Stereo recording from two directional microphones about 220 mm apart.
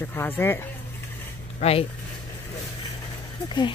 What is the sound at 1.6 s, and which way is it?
Speech, 30° left (ahead or behind).